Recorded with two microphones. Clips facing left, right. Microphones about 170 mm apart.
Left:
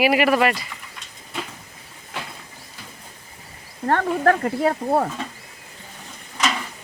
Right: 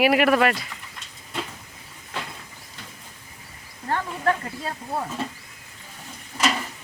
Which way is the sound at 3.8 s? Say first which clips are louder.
Left 6 dB; 60° left (ahead or behind).